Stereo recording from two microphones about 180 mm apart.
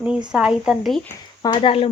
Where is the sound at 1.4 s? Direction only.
25° left (ahead or behind).